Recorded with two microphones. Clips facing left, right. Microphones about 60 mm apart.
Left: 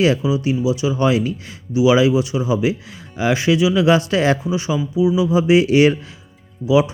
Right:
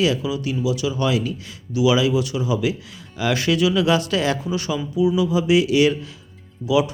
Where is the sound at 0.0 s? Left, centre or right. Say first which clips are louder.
Left 4 dB; left.